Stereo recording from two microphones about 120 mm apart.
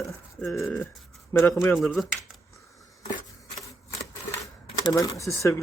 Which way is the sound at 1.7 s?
Centre (ahead or behind).